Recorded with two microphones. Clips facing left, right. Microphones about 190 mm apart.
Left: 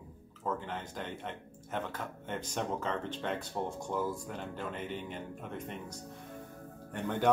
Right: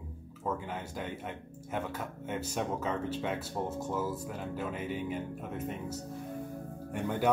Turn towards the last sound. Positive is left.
turn(degrees=-5)  # may be behind; listen again after turning